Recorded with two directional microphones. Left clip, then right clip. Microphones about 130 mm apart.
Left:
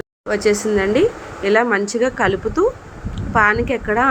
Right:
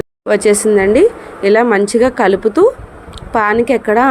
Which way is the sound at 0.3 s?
35° right (ahead or behind).